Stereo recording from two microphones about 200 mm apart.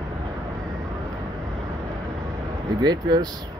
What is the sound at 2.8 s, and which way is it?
Speech, 20° right (ahead or behind).